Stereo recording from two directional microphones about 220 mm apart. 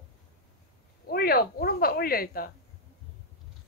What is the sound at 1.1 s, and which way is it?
A woman's voice, 45° left (ahead or behind).